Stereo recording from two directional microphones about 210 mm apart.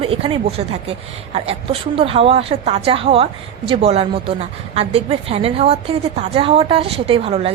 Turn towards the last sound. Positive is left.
turn(degrees=-25)  # may be behind; listen again after turning